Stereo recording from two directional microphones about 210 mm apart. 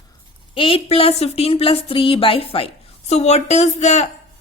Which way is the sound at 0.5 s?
25° left (ahead or behind).